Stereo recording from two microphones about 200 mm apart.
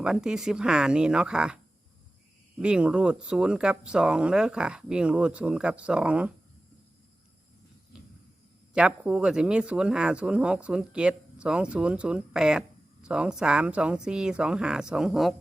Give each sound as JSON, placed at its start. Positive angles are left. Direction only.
{"t": 0.0, "sound": "speech", "side_deg": -5}
{"t": 2.6, "sound": "speech", "side_deg": -5}
{"t": 7.9, "sound": "a sound", "side_deg": -5}
{"t": 8.7, "sound": "speech", "side_deg": -5}